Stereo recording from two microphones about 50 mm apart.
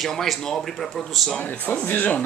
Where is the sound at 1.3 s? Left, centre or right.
Left.